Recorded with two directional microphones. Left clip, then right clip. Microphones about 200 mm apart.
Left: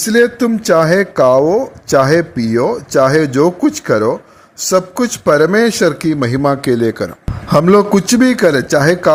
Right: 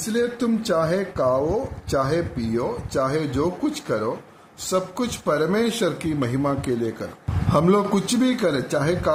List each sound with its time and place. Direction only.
0.1 s a man's voice: 40° left (ahead or behind)